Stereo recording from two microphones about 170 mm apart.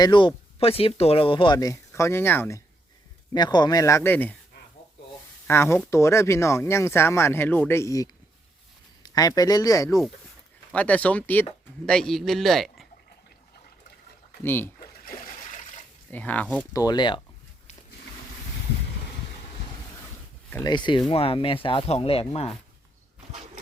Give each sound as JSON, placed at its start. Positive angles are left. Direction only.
{"t": 0.0, "sound": "speech", "side_deg": 25}
{"t": 3.3, "sound": "speech", "side_deg": 25}
{"t": 5.5, "sound": "speech", "side_deg": 15}
{"t": 10.7, "sound": "a man's voice", "side_deg": 10}
{"t": 14.4, "sound": "speech", "side_deg": 10}
{"t": 14.8, "sound": "a sound", "side_deg": 55}
{"t": 16.1, "sound": "speech", "side_deg": 10}
{"t": 16.7, "sound": "speech", "side_deg": 25}
{"t": 20.7, "sound": "speech", "side_deg": 25}